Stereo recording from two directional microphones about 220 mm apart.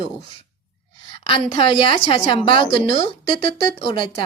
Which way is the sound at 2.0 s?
25° left (ahead or behind).